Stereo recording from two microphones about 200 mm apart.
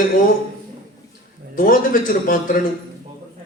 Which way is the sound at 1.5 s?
45° left (ahead or behind).